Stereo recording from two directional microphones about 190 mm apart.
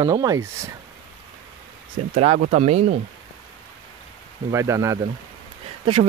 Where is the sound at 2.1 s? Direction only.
40° right (ahead or behind).